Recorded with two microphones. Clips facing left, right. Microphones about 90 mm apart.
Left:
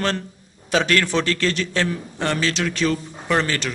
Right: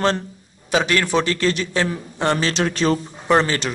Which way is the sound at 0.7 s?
10° right (ahead or behind).